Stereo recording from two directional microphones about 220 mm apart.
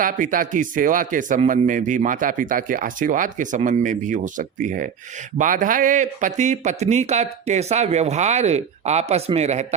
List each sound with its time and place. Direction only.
0.0 s a man's voice: 40° right (ahead or behind)